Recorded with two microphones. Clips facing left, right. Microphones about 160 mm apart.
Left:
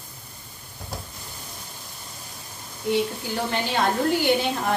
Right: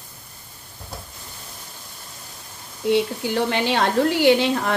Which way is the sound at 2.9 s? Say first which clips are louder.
Right 4 dB; 75° right (ahead or behind).